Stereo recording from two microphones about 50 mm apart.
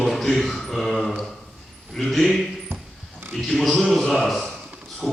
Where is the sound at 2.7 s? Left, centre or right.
Right.